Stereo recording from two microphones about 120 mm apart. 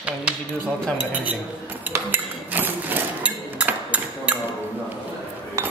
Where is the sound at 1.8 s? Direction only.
15° right (ahead or behind).